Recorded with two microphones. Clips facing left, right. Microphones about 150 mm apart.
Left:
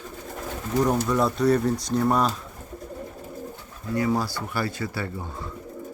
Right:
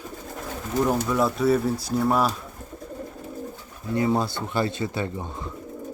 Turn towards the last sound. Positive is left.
turn(degrees=-20)  # may be behind; listen again after turning